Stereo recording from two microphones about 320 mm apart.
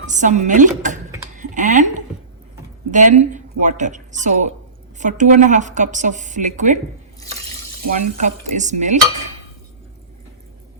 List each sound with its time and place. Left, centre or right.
0.0 s a woman's voice: right
1.4 s a sound: right
2.9 s a woman's voice: right
8.2 s a woman's voice: right